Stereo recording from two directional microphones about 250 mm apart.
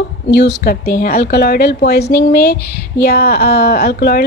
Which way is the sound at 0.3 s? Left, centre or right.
Left.